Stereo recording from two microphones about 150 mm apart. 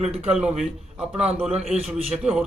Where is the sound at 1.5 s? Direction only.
45° right (ahead or behind).